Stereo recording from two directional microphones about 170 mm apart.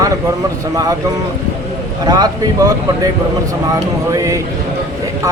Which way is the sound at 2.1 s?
20° right (ahead or behind).